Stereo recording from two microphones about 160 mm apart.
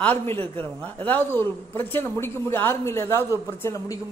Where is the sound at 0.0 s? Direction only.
10° left (ahead or behind).